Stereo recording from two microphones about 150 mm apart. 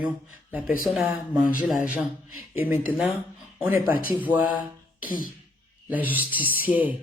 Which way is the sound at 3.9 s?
70° left (ahead or behind).